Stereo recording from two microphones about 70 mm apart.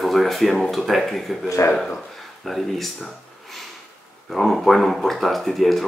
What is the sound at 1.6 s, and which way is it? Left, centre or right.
Speech, left.